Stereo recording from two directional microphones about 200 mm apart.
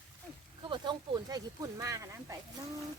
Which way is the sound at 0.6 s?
25° right (ahead or behind).